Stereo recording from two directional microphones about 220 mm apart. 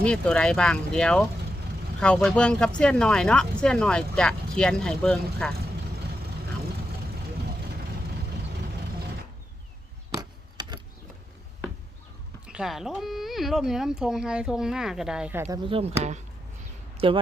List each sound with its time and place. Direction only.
0.0 s speech: 5° left (ahead or behind)
10.2 s rub: 20° right (ahead or behind)
12.5 s speech: centre (ahead or behind)
15.6 s speech: 25° right (ahead or behind)
17.0 s speech: 25° right (ahead or behind)